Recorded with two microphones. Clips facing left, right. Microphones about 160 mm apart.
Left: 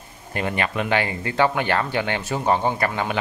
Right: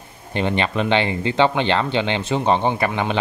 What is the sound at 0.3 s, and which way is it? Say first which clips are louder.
Speech: right 4 dB; 25° right (ahead or behind).